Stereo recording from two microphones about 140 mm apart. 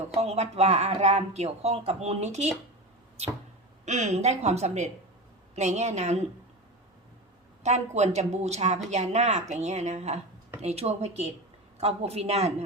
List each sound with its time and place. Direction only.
0.1 s speech: 50° right (ahead or behind)
3.8 s a woman's voice: 55° right (ahead or behind)
7.6 s speech: 55° right (ahead or behind)